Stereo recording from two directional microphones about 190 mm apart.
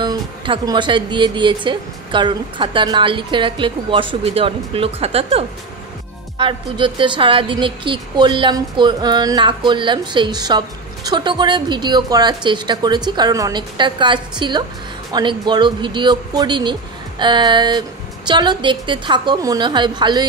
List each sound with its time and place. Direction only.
0.0 s speech: 20° right (ahead or behind)